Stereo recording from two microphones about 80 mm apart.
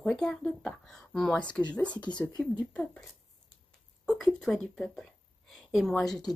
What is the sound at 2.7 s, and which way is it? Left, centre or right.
Speech, centre.